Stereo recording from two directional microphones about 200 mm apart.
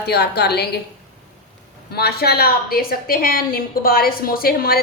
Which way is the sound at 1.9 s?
50° left (ahead or behind).